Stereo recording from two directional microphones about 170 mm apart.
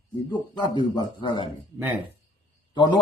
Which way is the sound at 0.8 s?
25° left (ahead or behind).